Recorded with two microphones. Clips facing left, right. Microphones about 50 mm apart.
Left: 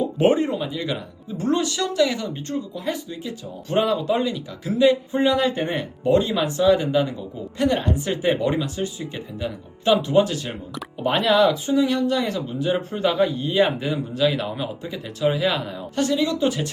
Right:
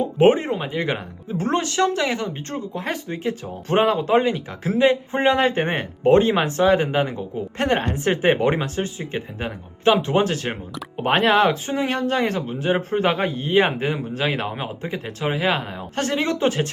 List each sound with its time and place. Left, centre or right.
0.0 s speech: right